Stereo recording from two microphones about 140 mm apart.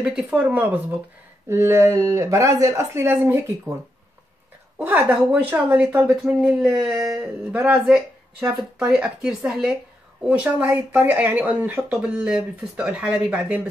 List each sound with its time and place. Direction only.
0.0 s speech: 10° right (ahead or behind)
4.7 s speech: 10° right (ahead or behind)